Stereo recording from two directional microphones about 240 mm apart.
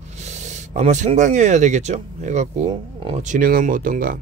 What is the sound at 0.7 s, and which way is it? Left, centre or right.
Speech, right.